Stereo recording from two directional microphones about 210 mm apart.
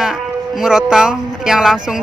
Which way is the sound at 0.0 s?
5° right (ahead or behind).